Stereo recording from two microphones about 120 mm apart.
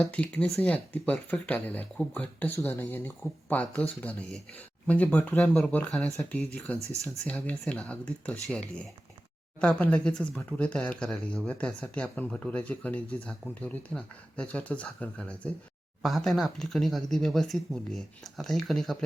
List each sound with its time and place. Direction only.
0.0 s speech: 10° left (ahead or behind)
4.9 s speech: 10° left (ahead or behind)
6.9 s speech: 25° right (ahead or behind)
7.3 s speech: 10° left (ahead or behind)
16.0 s speech: centre (ahead or behind)